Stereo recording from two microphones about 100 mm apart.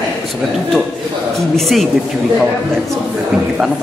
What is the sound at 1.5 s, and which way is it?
Speech, centre (ahead or behind).